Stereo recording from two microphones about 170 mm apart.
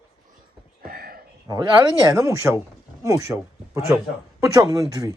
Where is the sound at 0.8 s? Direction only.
60° right (ahead or behind).